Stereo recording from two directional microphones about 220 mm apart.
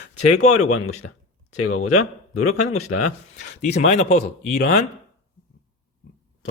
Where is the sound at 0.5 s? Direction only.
80° left.